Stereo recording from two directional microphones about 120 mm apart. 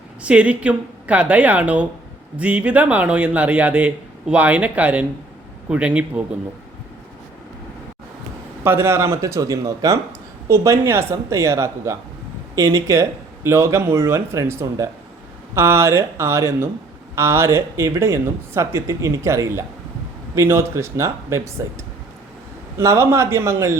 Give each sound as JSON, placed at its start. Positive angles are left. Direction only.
{"t": 0.2, "sound": "speech", "side_deg": -10}
{"t": 8.6, "sound": "speech", "side_deg": -20}